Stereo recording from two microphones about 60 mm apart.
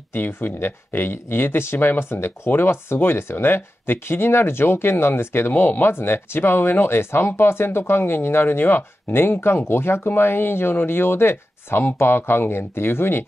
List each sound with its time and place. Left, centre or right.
0.1 s speech: left